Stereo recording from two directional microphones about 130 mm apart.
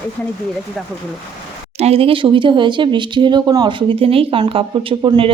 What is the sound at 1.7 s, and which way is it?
Speech, 50° right (ahead or behind).